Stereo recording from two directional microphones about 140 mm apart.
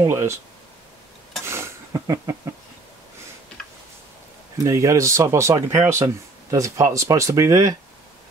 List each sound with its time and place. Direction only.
0.0 s speech: 20° right (ahead or behind)
1.4 s a sound: 20° right (ahead or behind)
4.6 s speech: 20° right (ahead or behind)